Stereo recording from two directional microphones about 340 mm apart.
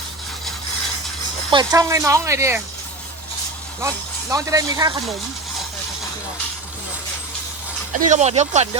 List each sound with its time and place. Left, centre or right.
1.5 s speech: centre
3.8 s speech: centre
8.1 s speech: centre